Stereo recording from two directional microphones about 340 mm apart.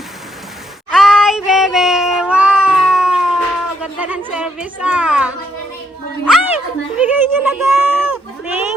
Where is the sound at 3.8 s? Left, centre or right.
Centre.